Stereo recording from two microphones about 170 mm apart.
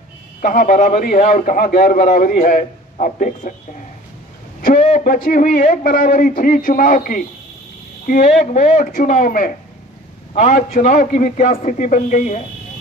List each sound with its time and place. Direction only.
0.4 s a man's voice: 55° left (ahead or behind)
4.6 s a man's voice: 50° left (ahead or behind)